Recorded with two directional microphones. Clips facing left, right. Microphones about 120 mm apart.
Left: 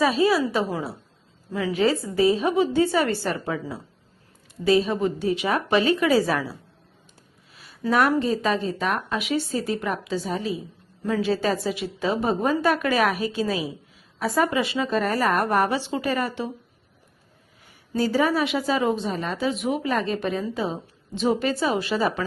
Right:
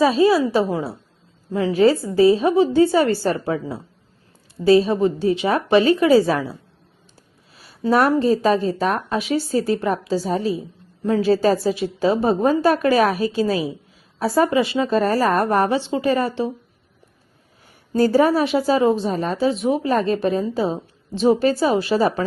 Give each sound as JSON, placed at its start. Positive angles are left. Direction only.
{"t": 0.0, "sound": "a woman's voice", "side_deg": -30}
{"t": 7.8, "sound": "a woman's voice", "side_deg": -35}
{"t": 17.9, "sound": "a woman's voice", "side_deg": -45}